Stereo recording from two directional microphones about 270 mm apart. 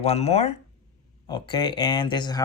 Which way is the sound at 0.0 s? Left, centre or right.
Left.